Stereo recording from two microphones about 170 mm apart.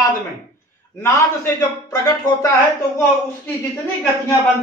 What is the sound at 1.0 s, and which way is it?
A man's voice, 15° left (ahead or behind).